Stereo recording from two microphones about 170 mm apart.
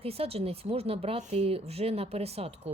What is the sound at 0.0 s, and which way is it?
Speech, 35° right (ahead or behind).